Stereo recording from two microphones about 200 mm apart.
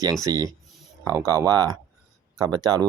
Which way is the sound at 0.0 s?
15° right (ahead or behind).